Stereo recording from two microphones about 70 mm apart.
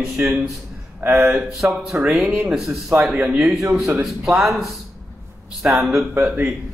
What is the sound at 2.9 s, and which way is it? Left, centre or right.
Speech, right.